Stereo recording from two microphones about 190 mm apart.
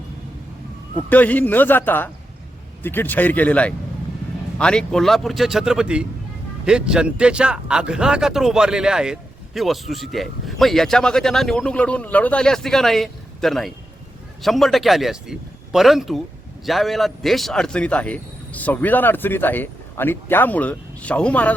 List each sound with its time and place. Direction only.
1.1 s a man's voice: 10° left (ahead or behind)